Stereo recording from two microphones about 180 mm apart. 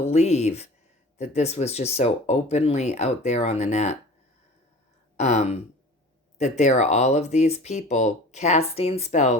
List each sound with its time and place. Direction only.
0.0 s speech: 35° left (ahead or behind)
5.1 s a sound: 40° left (ahead or behind)
6.4 s speech: 40° left (ahead or behind)